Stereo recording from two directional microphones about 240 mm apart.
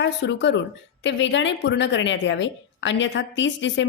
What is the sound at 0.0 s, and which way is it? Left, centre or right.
A woman's voice, left.